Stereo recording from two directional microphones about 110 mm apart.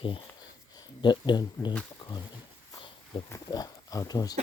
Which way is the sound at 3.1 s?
50° left (ahead or behind).